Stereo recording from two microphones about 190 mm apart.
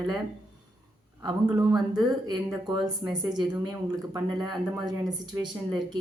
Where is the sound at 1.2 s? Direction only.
20° right (ahead or behind).